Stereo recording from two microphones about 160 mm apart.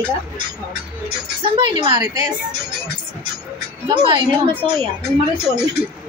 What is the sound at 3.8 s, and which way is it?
Speech, 30° right (ahead or behind).